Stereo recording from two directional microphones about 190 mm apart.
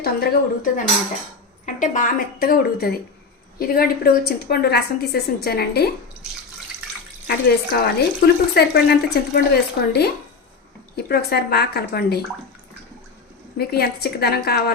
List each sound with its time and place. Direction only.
0.0 s a woman's voice: 50° left (ahead or behind)
1.6 s a woman's voice: 40° left (ahead or behind)
7.3 s speech: 55° left (ahead or behind)
13.6 s speech: 55° left (ahead or behind)